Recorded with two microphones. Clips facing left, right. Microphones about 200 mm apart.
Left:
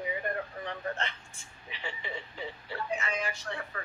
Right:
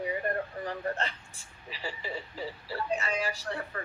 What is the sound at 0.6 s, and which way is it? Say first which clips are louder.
Speech: right 3 dB; 35° right (ahead or behind).